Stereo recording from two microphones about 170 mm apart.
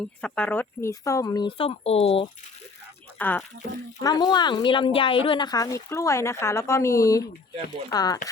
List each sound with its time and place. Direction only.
0.0 s speech: 5° left (ahead or behind); by 2.2 s 35° left (ahead or behind)
3.2 s speech: 10° left (ahead or behind)
4.0 s speech: 25° left (ahead or behind)